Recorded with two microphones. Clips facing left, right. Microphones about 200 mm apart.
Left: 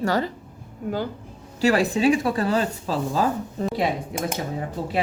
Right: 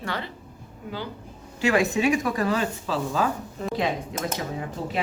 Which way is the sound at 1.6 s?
35° left (ahead or behind).